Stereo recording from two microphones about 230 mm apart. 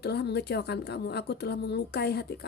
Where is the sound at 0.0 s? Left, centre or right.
Left.